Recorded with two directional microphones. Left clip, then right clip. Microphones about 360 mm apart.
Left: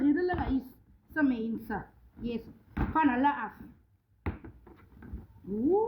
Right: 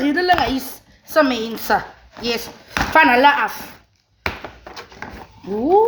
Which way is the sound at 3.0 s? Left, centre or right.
Right.